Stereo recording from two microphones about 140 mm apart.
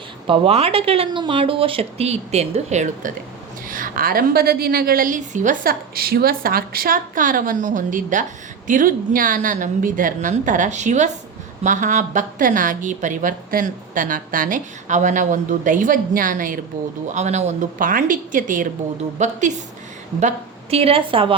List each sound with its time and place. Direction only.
0.3 s speech: 45° right (ahead or behind); by 3.1 s 60° right (ahead or behind)
3.7 s a woman's voice: 75° right (ahead or behind)
17.1 s a woman's voice: 55° right (ahead or behind); by 18.7 s 70° right (ahead or behind)
19.2 s a woman's voice: 60° right (ahead or behind); by 21.3 s 40° right (ahead or behind)